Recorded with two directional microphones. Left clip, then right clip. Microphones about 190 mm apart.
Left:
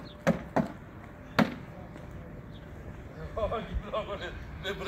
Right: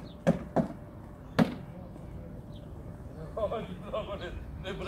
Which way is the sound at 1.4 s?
10° right (ahead or behind).